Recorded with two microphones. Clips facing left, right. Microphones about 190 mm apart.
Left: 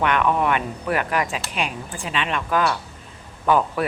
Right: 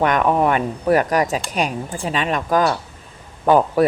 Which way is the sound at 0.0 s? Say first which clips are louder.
Right 4 dB; 40° right (ahead or behind).